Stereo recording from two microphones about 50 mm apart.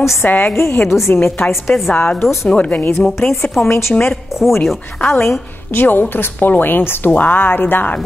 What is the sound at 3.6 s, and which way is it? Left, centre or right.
Speech, left.